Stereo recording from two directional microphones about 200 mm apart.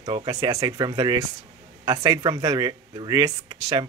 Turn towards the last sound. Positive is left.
turn(degrees=-20)  # may be behind; listen again after turning